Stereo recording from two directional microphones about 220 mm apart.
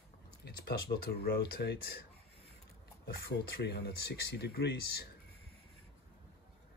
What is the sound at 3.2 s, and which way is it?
Speech, 50° left (ahead or behind).